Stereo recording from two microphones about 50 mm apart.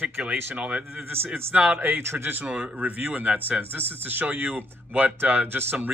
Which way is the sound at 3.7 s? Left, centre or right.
Right.